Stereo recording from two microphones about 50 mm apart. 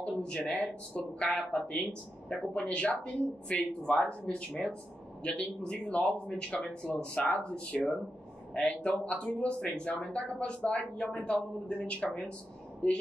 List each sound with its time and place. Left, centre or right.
0.3 s speech: left